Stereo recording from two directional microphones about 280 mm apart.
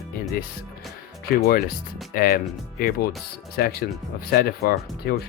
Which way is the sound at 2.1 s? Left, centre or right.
Left.